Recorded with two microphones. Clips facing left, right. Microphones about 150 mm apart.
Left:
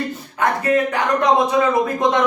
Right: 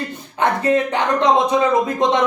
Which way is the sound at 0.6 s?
25° right (ahead or behind).